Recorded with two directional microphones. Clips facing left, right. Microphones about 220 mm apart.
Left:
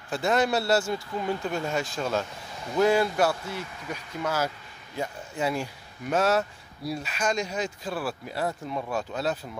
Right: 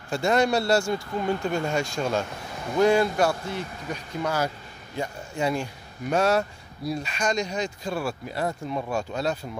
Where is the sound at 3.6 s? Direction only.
40° right (ahead or behind).